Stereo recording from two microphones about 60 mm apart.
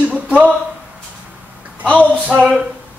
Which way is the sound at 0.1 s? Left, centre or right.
Right.